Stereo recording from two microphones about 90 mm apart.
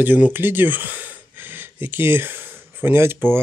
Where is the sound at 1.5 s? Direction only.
25° right (ahead or behind).